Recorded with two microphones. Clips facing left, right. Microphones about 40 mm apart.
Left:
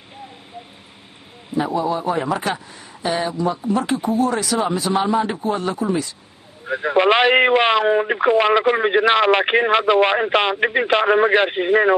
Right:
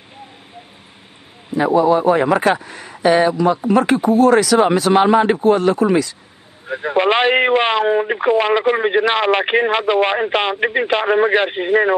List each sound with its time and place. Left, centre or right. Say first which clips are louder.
1.5 s a man's voice: right 7 dB; right
6.7 s a man's voice: even; centre